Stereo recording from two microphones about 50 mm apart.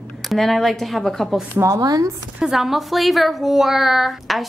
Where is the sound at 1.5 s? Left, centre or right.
Right.